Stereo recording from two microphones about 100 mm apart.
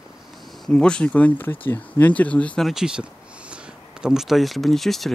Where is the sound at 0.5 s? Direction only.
5° left (ahead or behind).